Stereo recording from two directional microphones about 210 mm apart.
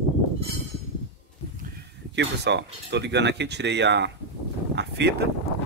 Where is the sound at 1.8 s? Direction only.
55° right (ahead or behind).